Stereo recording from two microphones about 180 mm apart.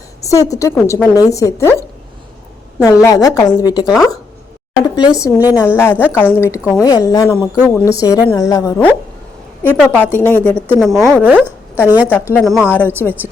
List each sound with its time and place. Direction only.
0.3 s a woman's voice: 20° left (ahead or behind)
2.8 s a woman's voice: 20° left (ahead or behind)
7.3 s a woman's voice: 10° right (ahead or behind)
7.9 s a woman's voice: 20° left (ahead or behind)
9.6 s a woman's voice: 10° left (ahead or behind)
11.2 s a woman's voice: 10° right (ahead or behind)
13.0 s a woman's voice: 10° left (ahead or behind)